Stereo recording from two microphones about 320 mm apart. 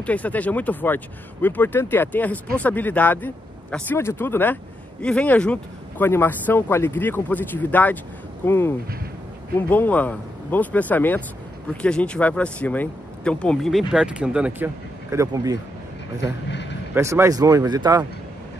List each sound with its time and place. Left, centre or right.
0.0 s speech: centre
16.4 s a man's voice: left
16.9 s speech: centre